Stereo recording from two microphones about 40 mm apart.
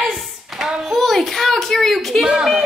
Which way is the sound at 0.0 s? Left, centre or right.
Centre.